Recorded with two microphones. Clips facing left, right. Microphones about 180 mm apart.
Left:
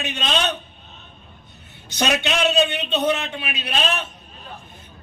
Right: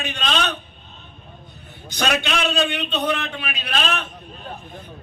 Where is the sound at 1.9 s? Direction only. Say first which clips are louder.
Left 1 dB; 20° left (ahead or behind).